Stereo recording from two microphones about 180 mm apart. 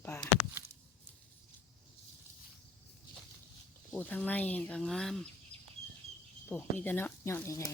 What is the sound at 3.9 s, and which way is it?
Speech, 10° left (ahead or behind).